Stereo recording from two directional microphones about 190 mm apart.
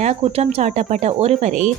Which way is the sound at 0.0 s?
35° right (ahead or behind).